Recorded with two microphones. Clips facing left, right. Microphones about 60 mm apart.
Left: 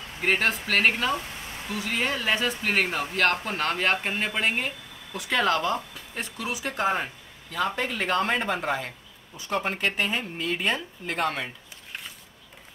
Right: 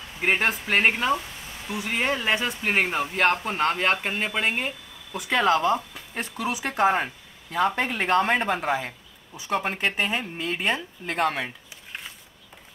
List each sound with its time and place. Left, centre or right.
0.2 s speech: centre
6.3 s speech: right
6.7 s speech: right
9.8 s speech: centre